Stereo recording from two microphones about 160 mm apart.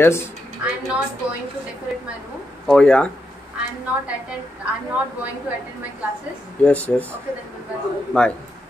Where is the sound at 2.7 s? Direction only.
5° left (ahead or behind).